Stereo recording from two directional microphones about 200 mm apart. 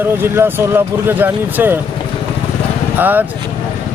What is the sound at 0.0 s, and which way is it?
Speech, 10° right (ahead or behind).